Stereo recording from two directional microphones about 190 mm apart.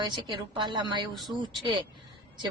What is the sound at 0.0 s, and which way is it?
A woman's voice, 25° right (ahead or behind).